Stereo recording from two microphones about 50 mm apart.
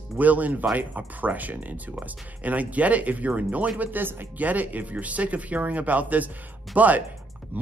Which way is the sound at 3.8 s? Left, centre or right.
Right.